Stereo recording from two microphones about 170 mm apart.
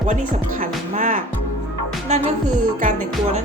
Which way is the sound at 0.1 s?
50° right (ahead or behind).